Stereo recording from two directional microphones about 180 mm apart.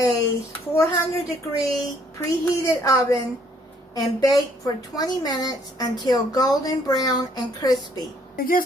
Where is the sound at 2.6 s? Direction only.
15° left (ahead or behind).